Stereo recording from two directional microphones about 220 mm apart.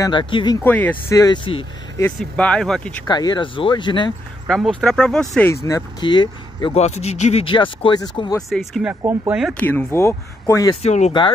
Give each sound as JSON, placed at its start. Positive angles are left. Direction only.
{"t": 0.0, "sound": "speech", "side_deg": 20}
{"t": 0.7, "sound": "speech", "side_deg": 10}
{"t": 2.0, "sound": "speech", "side_deg": 5}
{"t": 3.1, "sound": "speech", "side_deg": 20}
{"t": 4.5, "sound": "speech", "side_deg": 5}
{"t": 5.5, "sound": "speech", "side_deg": 15}
{"t": 8.4, "sound": "speech", "side_deg": 0}
{"t": 9.5, "sound": "speech", "side_deg": 10}
{"t": 10.8, "sound": "speech", "side_deg": 30}